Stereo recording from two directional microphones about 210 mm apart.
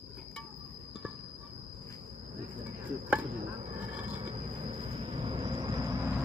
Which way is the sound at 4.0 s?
35° right (ahead or behind).